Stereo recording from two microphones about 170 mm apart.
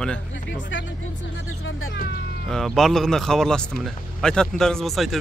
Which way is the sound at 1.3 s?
85° left.